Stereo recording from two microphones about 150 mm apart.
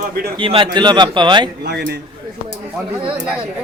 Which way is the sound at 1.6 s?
90° right.